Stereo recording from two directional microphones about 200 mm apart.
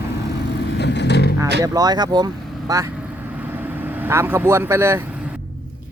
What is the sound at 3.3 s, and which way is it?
Vehicle, 10° right (ahead or behind).